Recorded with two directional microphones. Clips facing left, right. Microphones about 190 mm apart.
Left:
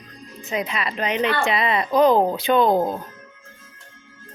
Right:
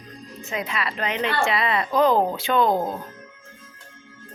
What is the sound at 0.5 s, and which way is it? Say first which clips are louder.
Speech: left 3 dB; 20° left (ahead or behind).